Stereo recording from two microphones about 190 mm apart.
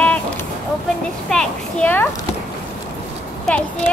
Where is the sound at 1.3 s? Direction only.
5° left (ahead or behind).